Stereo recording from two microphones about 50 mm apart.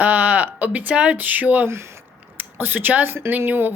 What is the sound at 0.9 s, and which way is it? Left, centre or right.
Speech, right.